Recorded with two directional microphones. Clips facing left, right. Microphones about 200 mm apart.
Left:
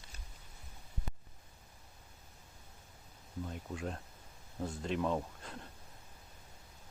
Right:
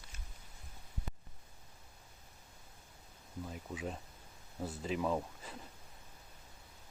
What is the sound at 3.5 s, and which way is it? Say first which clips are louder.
Speech: even; 5° right (ahead or behind).